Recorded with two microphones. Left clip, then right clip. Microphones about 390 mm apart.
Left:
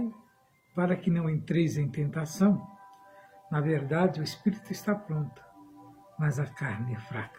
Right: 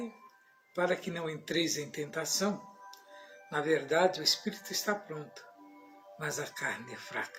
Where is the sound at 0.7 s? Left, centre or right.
Left.